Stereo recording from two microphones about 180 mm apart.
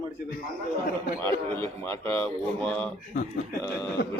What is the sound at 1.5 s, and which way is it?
A man's voice, 15° left (ahead or behind).